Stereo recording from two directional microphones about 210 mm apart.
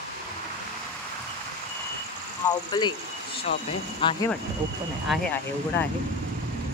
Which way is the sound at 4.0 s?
25° left (ahead or behind).